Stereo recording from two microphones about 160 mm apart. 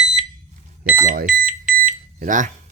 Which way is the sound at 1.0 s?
55° right (ahead or behind).